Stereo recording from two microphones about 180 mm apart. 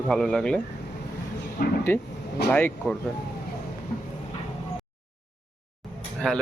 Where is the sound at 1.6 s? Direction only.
55° left (ahead or behind).